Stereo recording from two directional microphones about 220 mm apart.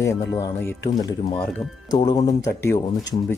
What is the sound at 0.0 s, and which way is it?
Speech, 15° left (ahead or behind).